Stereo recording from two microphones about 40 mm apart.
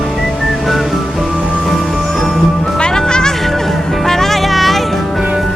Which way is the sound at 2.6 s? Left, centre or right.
Centre.